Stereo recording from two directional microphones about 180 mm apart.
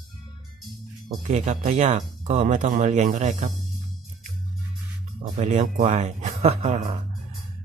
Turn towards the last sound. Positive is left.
turn(degrees=-35)  # may be behind; listen again after turning